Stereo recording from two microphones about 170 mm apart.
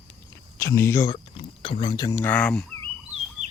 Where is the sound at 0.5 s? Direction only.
15° left (ahead or behind).